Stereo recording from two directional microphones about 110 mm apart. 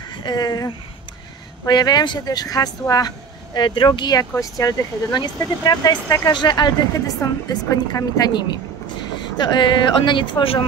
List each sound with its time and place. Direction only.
0.1 s speech: 40° left (ahead or behind)
3.5 s speech: 45° left (ahead or behind)